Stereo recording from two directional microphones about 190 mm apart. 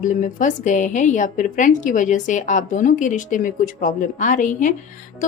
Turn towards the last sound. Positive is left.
turn(degrees=40)  # may be behind; listen again after turning